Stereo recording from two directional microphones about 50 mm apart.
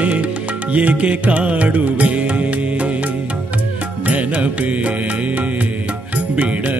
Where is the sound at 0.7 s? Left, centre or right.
Right.